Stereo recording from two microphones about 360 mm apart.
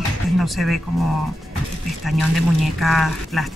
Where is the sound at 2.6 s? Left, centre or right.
Centre.